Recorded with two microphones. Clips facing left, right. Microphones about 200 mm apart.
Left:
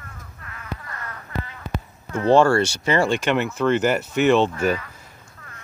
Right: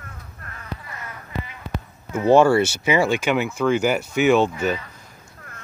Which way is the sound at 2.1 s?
10° right (ahead or behind).